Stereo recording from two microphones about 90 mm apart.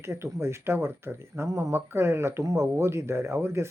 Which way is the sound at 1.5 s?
35° right (ahead or behind).